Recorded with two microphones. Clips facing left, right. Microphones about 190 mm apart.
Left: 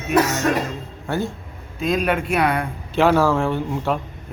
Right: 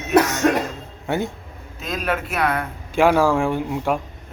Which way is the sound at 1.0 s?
20° right (ahead or behind).